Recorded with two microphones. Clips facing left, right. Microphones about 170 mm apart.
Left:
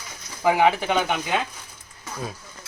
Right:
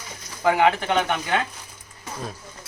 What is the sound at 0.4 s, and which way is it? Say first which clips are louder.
Speech: even; 10° left (ahead or behind).